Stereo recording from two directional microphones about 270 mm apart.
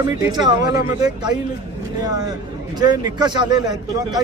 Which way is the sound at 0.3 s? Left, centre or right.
Centre.